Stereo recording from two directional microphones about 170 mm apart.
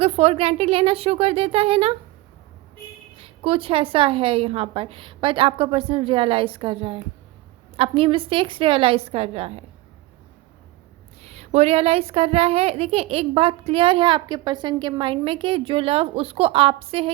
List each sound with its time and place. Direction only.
0.0 s a woman's voice: 35° right (ahead or behind)
3.2 s a woman's voice: 35° right (ahead or behind)
11.2 s a woman's voice: 40° right (ahead or behind)